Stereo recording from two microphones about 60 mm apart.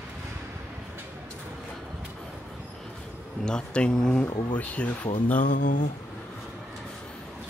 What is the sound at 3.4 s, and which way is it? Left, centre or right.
Speech, centre.